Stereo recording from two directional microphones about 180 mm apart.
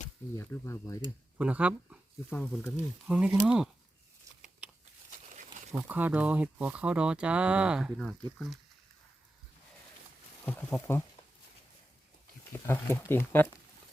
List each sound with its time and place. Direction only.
0.3 s speech: 15° left (ahead or behind)
1.4 s speech: 10° right (ahead or behind)
2.3 s speech: 5° left (ahead or behind)
3.1 s speech: 5° right (ahead or behind)
5.9 s speech: 10° right (ahead or behind)
10.4 s speech: 5° left (ahead or behind)
12.6 s speech: 15° left (ahead or behind)